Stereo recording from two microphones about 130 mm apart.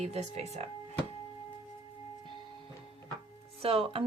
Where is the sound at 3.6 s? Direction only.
45° right (ahead or behind).